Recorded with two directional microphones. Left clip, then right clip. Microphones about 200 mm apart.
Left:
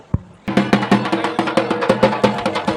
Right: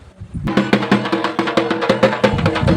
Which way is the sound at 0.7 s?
35° left (ahead or behind).